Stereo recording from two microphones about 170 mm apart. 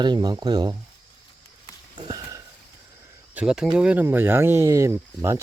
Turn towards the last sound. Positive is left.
turn(degrees=-15)  # may be behind; listen again after turning